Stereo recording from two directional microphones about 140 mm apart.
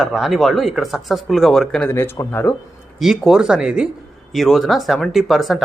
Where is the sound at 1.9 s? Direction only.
15° left (ahead or behind).